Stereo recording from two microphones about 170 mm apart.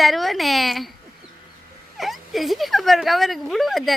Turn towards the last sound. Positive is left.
turn(degrees=0)  # may be behind; listen again after turning